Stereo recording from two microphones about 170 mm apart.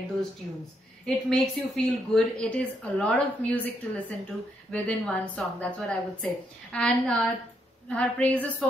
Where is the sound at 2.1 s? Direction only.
5° left (ahead or behind).